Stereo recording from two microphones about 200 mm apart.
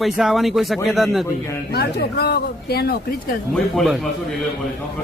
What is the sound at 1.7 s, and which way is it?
Speech, 50° left (ahead or behind).